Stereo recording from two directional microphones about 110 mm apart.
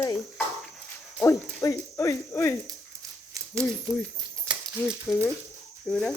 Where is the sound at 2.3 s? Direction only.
25° left (ahead or behind).